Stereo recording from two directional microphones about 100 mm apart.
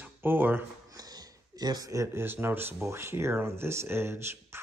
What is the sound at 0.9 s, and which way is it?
A man's voice, 40° right (ahead or behind).